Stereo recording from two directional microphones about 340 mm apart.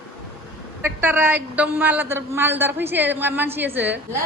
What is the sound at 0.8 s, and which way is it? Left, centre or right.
A man's voice, centre.